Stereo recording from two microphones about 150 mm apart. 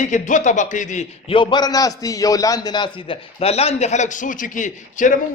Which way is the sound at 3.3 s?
45° left (ahead or behind).